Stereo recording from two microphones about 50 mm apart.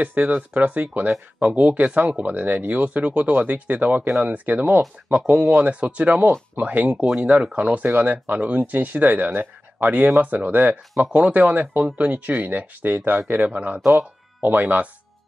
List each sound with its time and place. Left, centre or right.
0.0 s speech: right